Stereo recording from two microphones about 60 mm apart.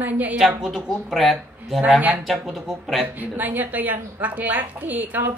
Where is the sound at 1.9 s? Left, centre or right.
Right.